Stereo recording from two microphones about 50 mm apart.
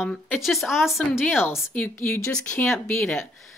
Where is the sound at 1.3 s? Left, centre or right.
Left.